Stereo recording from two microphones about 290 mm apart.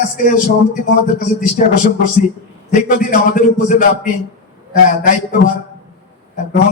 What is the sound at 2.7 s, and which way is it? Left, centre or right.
Speech, left.